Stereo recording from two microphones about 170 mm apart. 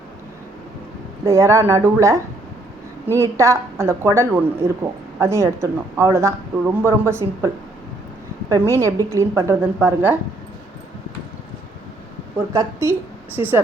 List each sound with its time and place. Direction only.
1.2 s a woman's voice: 15° right (ahead or behind)
12.5 s a woman's voice: 15° right (ahead or behind)